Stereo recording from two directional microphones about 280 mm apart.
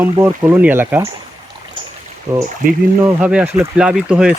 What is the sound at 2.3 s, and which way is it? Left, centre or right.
Speech, centre.